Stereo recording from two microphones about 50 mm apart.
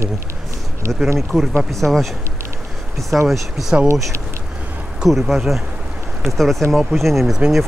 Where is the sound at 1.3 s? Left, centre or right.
Centre.